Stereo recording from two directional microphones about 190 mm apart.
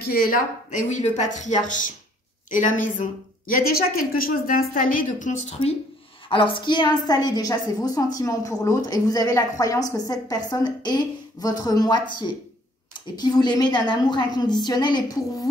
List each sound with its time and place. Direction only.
0.1 s a woman's voice: 50° left (ahead or behind); by 15.1 s 25° left (ahead or behind)